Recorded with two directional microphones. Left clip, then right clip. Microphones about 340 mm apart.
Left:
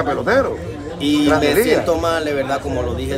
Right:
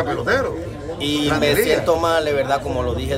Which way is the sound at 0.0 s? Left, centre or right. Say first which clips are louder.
Left 3 dB; centre.